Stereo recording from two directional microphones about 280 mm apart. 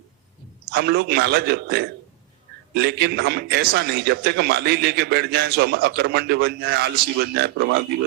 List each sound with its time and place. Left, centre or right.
0.7 s a man's voice: right